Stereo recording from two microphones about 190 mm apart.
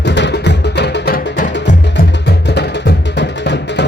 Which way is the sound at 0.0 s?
70° left (ahead or behind).